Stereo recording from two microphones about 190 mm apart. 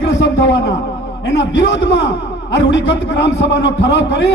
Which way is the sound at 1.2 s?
65° left (ahead or behind).